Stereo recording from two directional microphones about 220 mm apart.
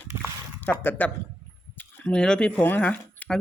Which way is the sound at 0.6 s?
10° left (ahead or behind).